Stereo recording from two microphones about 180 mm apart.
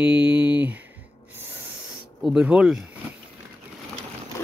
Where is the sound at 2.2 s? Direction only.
5° right (ahead or behind).